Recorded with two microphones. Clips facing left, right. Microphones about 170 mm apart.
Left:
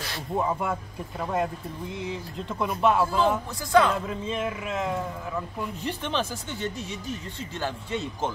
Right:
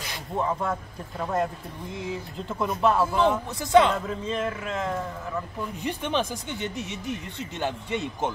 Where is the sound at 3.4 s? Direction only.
25° right (ahead or behind).